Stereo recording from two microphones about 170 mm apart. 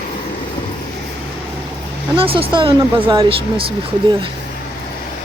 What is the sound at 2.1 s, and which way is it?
Speech, 35° right (ahead or behind).